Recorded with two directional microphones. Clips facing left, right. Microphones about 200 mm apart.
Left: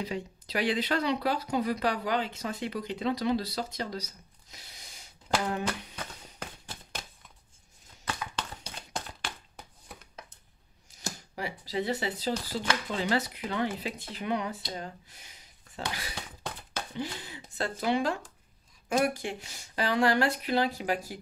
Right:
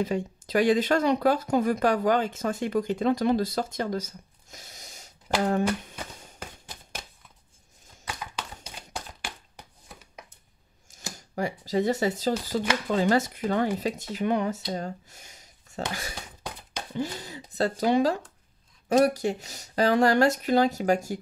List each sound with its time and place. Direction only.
0.0 s speech: 50° right (ahead or behind)
10.9 s a sound: 45° right (ahead or behind)
11.3 s speech: 45° right (ahead or behind)